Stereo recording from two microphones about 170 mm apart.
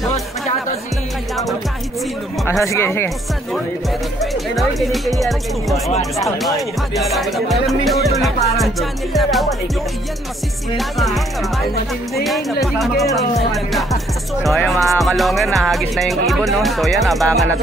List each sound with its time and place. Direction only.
2.6 s speech: 15° left (ahead or behind)
4.2 s music: centre (ahead or behind)
10.8 s music: centre (ahead or behind)
13.0 s speech: 20° left (ahead or behind)
13.5 s music: centre (ahead or behind)